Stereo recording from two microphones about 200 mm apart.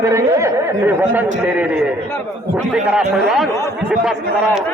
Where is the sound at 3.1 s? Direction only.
Centre (ahead or behind).